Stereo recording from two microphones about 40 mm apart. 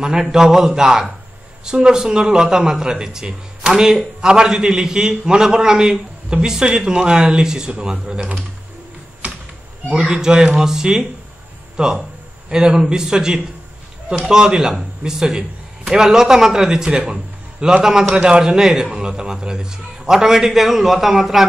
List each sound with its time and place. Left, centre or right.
0.2 s a man's voice: centre
10.1 s a man's voice: centre